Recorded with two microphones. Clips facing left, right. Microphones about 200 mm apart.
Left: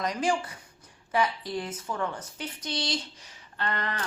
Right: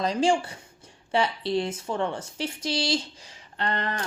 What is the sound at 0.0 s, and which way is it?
Speech, 30° right (ahead or behind).